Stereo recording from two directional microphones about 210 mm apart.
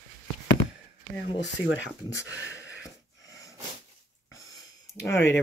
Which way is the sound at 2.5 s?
60° left (ahead or behind).